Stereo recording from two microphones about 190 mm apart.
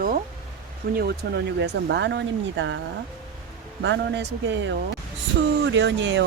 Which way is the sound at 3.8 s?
70° right (ahead or behind).